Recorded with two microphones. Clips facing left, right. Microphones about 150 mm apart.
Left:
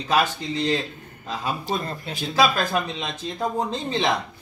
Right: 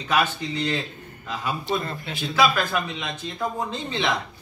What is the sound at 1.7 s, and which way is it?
Speech, 40° left (ahead or behind).